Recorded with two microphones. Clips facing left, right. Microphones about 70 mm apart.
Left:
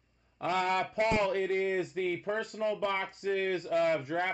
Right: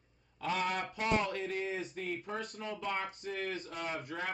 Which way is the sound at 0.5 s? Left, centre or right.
Left.